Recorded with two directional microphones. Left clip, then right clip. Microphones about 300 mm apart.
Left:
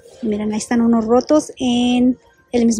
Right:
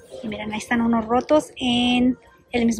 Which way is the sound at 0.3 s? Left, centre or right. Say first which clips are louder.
Left 5 dB; centre.